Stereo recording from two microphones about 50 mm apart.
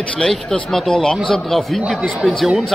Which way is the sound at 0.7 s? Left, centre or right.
Centre.